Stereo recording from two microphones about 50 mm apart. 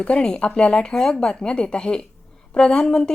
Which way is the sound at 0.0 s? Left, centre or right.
Centre.